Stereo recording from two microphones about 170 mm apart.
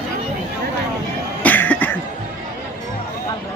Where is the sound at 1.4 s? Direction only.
10° left (ahead or behind).